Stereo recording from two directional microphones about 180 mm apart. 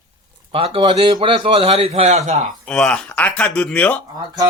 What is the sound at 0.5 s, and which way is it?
Speech, 30° right (ahead or behind).